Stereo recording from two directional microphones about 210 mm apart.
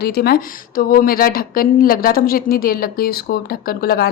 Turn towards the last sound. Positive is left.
turn(degrees=45)  # may be behind; listen again after turning